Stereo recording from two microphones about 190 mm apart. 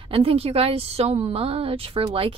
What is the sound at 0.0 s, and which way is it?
A woman's voice, 30° right (ahead or behind).